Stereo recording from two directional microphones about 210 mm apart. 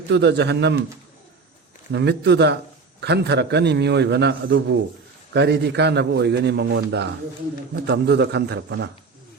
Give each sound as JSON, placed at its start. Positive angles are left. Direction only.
{"t": 0.1, "sound": "speech", "side_deg": -55}
{"t": 1.9, "sound": "a man's voice", "side_deg": -55}